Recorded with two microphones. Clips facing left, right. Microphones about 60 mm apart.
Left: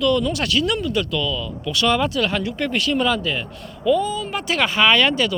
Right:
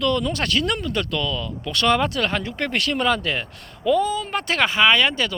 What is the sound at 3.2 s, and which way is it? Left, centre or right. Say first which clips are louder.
Speech: left 1 dB; right.